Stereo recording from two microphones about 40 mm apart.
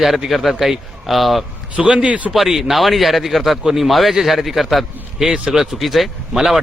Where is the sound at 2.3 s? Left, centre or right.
Centre.